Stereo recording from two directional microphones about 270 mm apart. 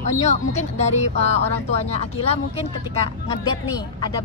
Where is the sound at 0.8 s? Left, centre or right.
Left.